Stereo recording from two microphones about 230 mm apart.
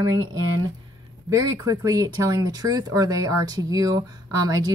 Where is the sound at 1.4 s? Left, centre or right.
Centre.